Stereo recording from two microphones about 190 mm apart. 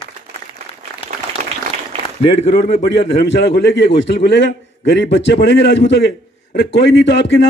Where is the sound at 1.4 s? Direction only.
50° right (ahead or behind).